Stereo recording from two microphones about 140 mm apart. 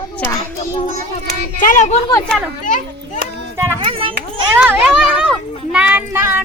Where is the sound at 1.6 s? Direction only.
65° left (ahead or behind).